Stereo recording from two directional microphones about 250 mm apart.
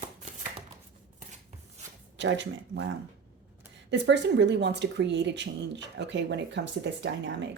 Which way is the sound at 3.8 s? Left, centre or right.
Right.